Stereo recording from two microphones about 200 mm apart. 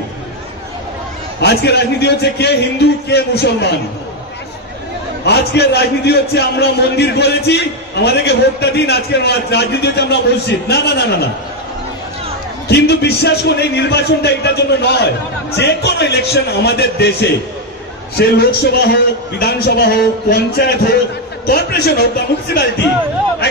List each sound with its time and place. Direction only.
1.4 s a man's voice: 55° left (ahead or behind)
5.2 s a man's voice: 55° left (ahead or behind)
12.6 s a man's voice: 55° left (ahead or behind)